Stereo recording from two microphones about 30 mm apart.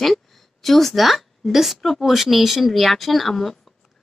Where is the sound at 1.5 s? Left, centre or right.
Centre.